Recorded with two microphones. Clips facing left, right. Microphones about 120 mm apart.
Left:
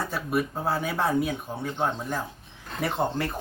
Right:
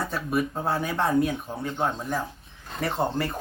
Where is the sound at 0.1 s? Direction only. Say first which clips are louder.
Right 1 dB; centre (ahead or behind).